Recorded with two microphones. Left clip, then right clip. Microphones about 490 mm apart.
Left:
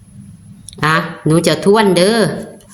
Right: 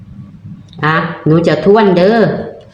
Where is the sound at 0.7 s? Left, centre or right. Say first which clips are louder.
Right 1 dB; left.